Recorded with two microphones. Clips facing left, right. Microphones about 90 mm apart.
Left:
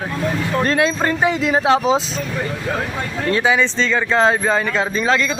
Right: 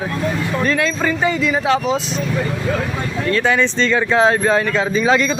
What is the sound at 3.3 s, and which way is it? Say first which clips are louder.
Speech: even; 5° left (ahead or behind).